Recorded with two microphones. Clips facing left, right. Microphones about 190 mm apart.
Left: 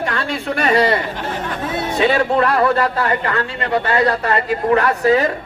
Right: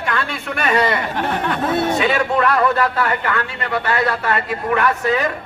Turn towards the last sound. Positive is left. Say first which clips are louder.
# left 4 dB
turn(degrees=35)  # may be behind; listen again after turning